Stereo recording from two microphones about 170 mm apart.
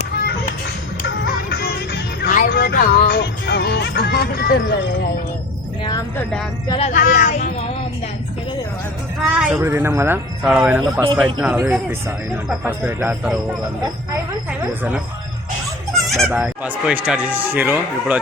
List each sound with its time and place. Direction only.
1.0 s music: 75° left (ahead or behind)
6.7 s speech: 45° left (ahead or behind)
9.2 s speech: 10° right (ahead or behind)
16.0 s goat: centre (ahead or behind)
16.3 s speech: 10° right (ahead or behind)